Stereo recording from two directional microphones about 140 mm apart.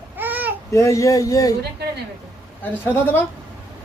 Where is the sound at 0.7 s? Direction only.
20° left (ahead or behind).